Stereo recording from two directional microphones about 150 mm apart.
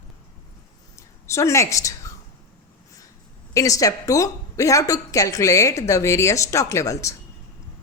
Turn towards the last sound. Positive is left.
turn(degrees=20)  # may be behind; listen again after turning